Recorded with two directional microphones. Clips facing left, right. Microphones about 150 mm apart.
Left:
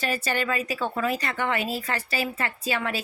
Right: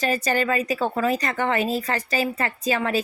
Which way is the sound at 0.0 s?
40° right (ahead or behind).